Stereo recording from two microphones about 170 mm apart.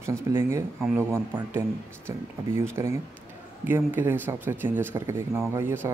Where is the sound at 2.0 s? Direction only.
15° right (ahead or behind).